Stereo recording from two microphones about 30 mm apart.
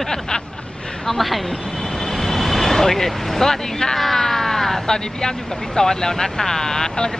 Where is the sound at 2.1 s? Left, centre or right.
Centre.